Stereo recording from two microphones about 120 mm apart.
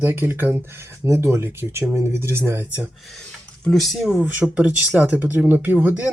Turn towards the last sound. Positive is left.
turn(degrees=-15)  # may be behind; listen again after turning